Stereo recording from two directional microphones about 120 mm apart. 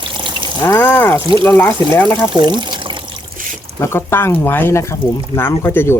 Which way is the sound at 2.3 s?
40° right (ahead or behind).